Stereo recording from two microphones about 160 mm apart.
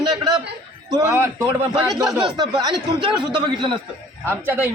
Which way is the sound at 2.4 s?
30° right (ahead or behind).